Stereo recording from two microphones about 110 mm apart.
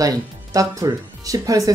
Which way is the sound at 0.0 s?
30° right (ahead or behind).